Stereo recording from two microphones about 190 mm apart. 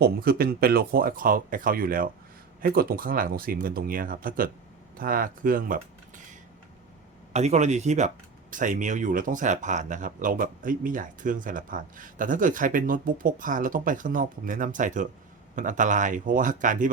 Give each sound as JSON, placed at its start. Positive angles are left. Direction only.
{"t": 0.0, "sound": "speech", "side_deg": -50}
{"t": 7.3, "sound": "speech", "side_deg": -35}